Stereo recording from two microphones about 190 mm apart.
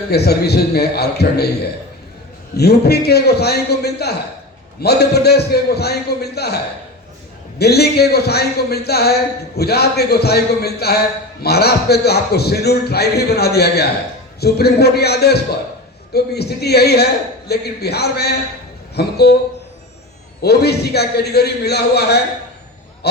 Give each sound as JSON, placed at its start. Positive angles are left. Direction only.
{"t": 0.1, "sound": "a man's voice", "side_deg": 60}
{"t": 2.6, "sound": "a man's voice", "side_deg": 55}
{"t": 7.6, "sound": "a man's voice", "side_deg": 55}
{"t": 20.4, "sound": "a man's voice", "side_deg": 60}